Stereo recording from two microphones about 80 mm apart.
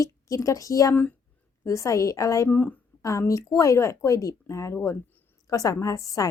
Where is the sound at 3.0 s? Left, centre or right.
Left.